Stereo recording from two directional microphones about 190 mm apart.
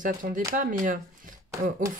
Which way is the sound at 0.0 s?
45° right (ahead or behind).